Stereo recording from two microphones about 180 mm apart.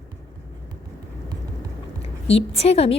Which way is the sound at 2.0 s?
35° left (ahead or behind).